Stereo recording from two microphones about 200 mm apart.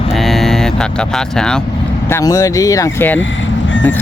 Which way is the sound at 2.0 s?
15° left (ahead or behind).